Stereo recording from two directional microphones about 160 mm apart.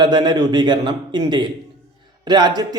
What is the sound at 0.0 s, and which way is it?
Speech, 25° right (ahead or behind).